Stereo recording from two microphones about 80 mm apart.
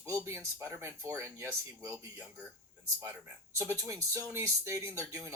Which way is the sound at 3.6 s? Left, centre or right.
Right.